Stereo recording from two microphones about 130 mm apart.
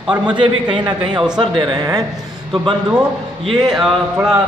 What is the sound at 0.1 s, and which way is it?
A man's voice, 35° right (ahead or behind).